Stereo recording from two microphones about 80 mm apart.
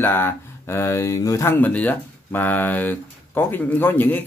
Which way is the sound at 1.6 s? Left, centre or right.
Left.